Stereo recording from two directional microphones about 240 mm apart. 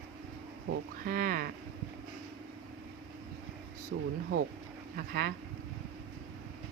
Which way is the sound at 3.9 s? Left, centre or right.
Right.